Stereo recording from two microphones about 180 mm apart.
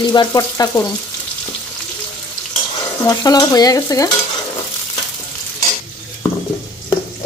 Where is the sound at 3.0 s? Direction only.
20° left (ahead or behind).